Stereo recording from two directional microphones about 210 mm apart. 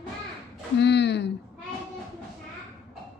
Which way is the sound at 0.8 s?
55° left (ahead or behind).